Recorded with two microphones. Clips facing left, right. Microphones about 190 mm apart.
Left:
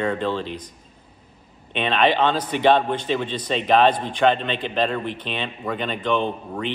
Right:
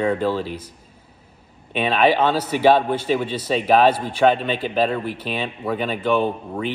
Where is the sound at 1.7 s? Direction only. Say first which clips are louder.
Right 2 dB; 5° right (ahead or behind).